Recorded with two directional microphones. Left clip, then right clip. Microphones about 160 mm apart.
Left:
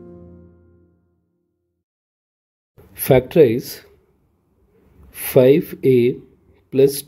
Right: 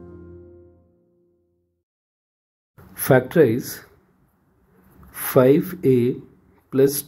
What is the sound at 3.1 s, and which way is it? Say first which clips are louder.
Speech: left 2 dB; 35° left (ahead or behind).